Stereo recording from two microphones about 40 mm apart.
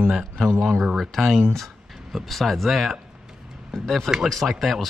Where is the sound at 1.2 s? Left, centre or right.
Centre.